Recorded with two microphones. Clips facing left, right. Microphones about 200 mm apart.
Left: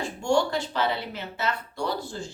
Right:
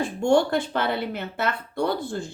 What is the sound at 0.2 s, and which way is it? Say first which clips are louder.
A woman's voice: right 4 dB; 55° right (ahead or behind).